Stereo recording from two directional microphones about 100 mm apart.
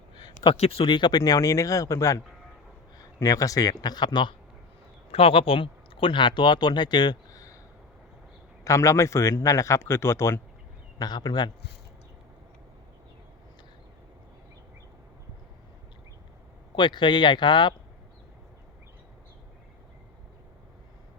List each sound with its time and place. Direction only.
0.2 s a sound: 50° left (ahead or behind)
0.5 s speech: 85° left
0.9 s speech: 45° left (ahead or behind)
5.1 s speech: 70° left (ahead or behind); by 7.6 s 35° left (ahead or behind)
8.6 s speech: 30° left (ahead or behind)
10.9 s speech: 45° left (ahead or behind)
16.7 s speech: 50° left (ahead or behind)